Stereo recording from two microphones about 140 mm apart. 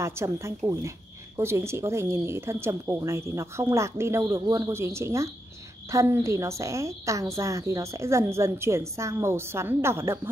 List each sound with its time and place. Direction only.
0.0 s speech: 20° right (ahead or behind)